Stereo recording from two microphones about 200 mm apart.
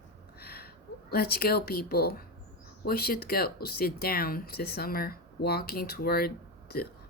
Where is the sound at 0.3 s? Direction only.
50° left (ahead or behind).